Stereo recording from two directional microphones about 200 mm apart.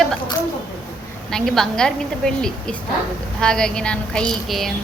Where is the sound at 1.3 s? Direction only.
Centre (ahead or behind).